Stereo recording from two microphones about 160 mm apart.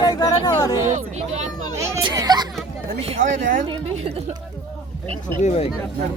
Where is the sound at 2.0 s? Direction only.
25° right (ahead or behind).